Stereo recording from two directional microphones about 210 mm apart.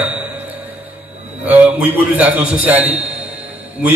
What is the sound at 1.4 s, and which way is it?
A man's voice, 5° right (ahead or behind).